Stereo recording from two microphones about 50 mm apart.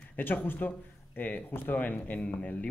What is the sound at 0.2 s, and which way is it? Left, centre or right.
Speech, left.